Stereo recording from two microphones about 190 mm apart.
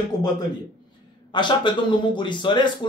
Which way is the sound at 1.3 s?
25° left (ahead or behind).